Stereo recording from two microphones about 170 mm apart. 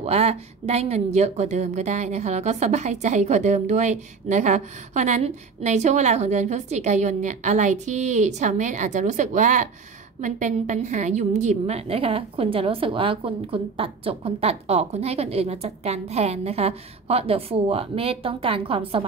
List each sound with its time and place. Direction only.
0.0 s a woman's voice: 35° right (ahead or behind)